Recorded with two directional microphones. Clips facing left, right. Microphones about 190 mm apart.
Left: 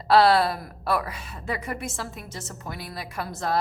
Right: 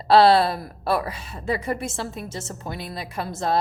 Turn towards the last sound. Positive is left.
turn(degrees=-25)  # may be behind; listen again after turning